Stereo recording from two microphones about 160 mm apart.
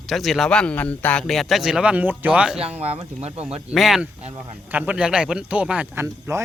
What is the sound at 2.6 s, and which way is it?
Speech, 40° right (ahead or behind).